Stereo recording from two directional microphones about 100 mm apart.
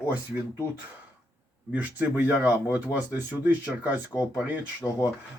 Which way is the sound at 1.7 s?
15° right (ahead or behind).